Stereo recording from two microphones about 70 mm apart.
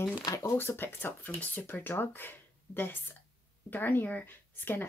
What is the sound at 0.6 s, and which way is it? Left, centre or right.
Speech, left.